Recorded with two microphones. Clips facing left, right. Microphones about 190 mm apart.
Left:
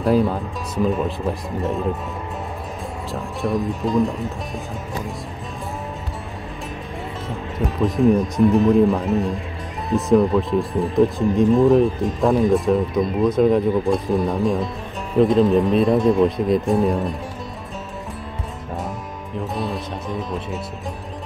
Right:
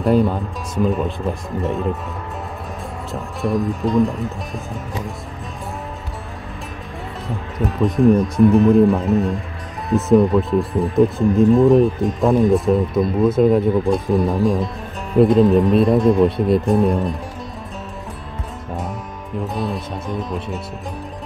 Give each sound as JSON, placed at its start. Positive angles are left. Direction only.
{"t": 0.0, "sound": "speech", "side_deg": 0}
{"t": 3.1, "sound": "speech", "side_deg": 0}
{"t": 7.2, "sound": "speech", "side_deg": 0}
{"t": 19.4, "sound": "speech", "side_deg": 0}